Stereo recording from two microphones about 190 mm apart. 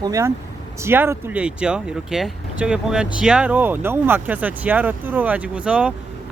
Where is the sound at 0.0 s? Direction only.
15° right (ahead or behind).